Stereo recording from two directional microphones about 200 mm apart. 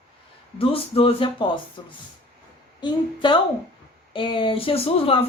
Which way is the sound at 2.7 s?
25° left (ahead or behind).